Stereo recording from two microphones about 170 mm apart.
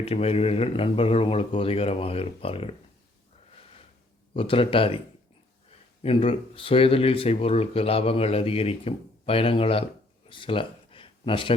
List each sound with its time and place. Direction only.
0.0 s speech: 35° left (ahead or behind)
4.4 s speech: 30° left (ahead or behind)
6.0 s speech: 35° left (ahead or behind)
10.2 s a sound: 30° left (ahead or behind)